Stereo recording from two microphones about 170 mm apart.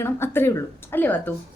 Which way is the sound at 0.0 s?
15° left (ahead or behind).